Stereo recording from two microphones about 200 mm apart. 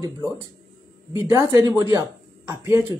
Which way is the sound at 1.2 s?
15° right (ahead or behind).